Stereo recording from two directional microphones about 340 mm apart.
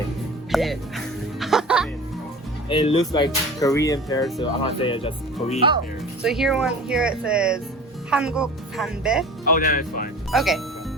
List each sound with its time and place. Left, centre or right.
0.5 s music: centre
2.6 s speech: centre
6.2 s speech: centre
9.5 s speech: left
10.3 s speech: centre